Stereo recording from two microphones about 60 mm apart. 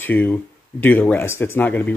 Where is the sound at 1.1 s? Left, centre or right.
Left.